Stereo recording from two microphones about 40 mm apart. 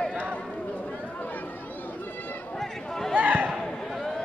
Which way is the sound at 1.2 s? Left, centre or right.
Left.